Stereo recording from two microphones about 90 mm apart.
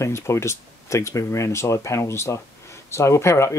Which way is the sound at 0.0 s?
30° left (ahead or behind).